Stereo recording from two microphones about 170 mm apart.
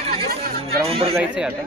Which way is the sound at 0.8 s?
35° right (ahead or behind).